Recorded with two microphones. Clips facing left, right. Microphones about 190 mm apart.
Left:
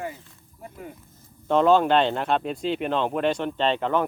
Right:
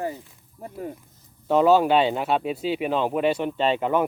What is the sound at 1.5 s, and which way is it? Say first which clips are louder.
Speech: right 1 dB; 5° right (ahead or behind).